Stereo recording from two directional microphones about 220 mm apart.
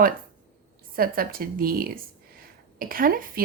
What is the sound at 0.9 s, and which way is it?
A woman's voice, 40° right (ahead or behind).